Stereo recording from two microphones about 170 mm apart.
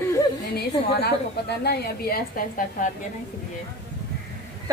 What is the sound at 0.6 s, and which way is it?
A woman's voice, 70° left (ahead or behind).